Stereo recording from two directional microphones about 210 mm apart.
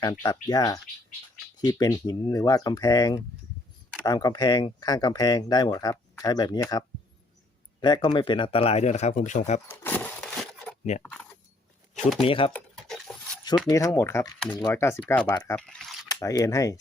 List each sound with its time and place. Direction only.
0.2 s speech: 15° left (ahead or behind); by 9.6 s 35° left (ahead or behind)
9.6 s a sound: 10° left (ahead or behind)
11.0 s keys jangling: 5° left (ahead or behind)
12.2 s speech: 25° left (ahead or behind)
12.5 s a sound: 5° left (ahead or behind)
13.7 s speech: 15° left (ahead or behind)
16.0 s speech: 15° left (ahead or behind)